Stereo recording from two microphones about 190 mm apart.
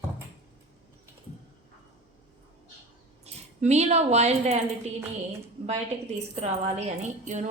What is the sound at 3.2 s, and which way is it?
Speech, 35° right (ahead or behind).